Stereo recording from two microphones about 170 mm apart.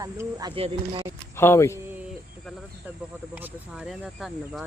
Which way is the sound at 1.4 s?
15° left (ahead or behind).